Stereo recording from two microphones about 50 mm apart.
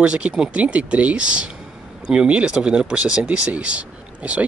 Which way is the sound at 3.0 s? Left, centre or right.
Right.